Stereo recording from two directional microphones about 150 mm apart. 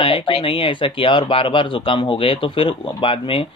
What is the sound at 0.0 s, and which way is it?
Speech, 35° left (ahead or behind).